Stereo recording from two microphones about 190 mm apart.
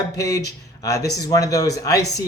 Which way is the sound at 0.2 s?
15° left (ahead or behind).